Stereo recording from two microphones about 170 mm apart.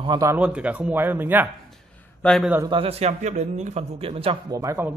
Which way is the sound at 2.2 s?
5° left (ahead or behind).